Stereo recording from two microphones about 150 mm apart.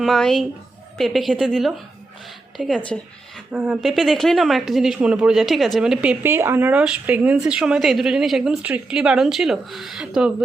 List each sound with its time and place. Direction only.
0.0 s a woman's voice: 5° left (ahead or behind)
3.8 s speech: centre (ahead or behind)